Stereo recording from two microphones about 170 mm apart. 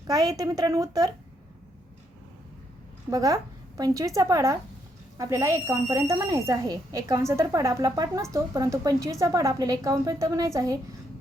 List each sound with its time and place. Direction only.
0.1 s speech: 20° right (ahead or behind)
3.1 s speech: 20° right (ahead or behind)